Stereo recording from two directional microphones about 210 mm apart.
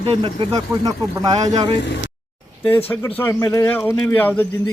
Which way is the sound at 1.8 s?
55° left (ahead or behind).